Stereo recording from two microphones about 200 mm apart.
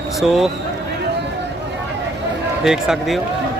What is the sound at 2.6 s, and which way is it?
Speech, centre (ahead or behind).